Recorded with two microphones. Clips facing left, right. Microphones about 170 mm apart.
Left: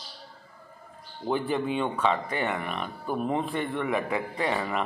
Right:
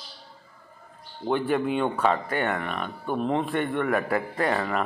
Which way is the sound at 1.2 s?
Centre (ahead or behind).